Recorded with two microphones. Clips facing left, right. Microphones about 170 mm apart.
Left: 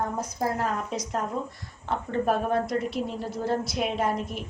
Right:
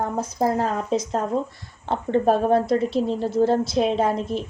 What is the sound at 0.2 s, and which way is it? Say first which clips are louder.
A woman's voice: right 6 dB; 30° right (ahead or behind).